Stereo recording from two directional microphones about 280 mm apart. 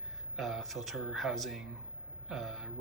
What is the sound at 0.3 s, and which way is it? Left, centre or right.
Speech, centre.